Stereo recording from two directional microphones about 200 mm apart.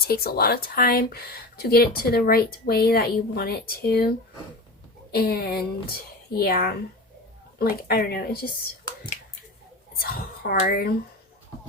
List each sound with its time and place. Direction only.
0.0 s speech: 50° left (ahead or behind)
5.1 s speech: 50° left (ahead or behind)
10.0 s speech: 50° left (ahead or behind)